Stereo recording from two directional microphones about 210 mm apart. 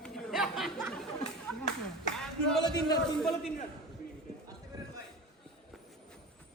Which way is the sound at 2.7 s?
20° left (ahead or behind).